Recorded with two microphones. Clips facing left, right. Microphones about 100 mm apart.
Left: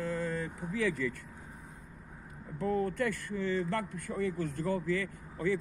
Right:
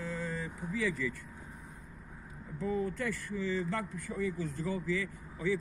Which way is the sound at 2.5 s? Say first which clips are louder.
Left 3 dB; 60° left (ahead or behind).